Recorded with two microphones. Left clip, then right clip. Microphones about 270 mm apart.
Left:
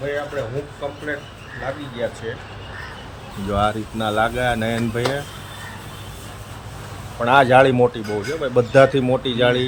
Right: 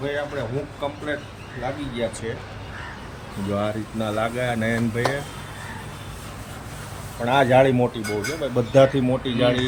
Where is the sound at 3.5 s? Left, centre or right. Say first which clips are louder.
Left 6 dB; centre.